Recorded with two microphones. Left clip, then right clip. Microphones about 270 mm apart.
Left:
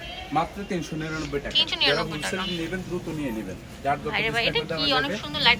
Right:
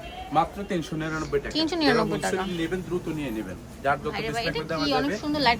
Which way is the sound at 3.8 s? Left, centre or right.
Centre.